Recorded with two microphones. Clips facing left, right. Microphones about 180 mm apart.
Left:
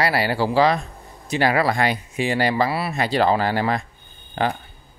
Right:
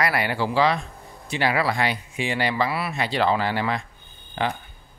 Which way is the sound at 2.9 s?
40° left (ahead or behind).